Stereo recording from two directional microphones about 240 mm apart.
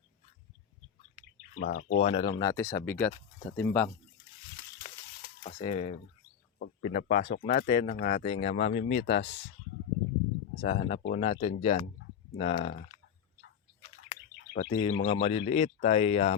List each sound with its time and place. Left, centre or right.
1.6 s speech: left
2.0 s speech: left; by 3.8 s centre
5.5 s speech: left
9.0 s speech: left
10.6 s speech: left
14.1 s bird: left
15.0 s speech: left